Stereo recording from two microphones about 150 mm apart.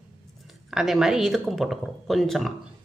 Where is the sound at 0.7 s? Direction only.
Centre (ahead or behind).